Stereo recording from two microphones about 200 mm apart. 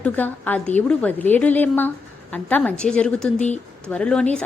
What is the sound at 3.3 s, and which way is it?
Speech, 35° left (ahead or behind).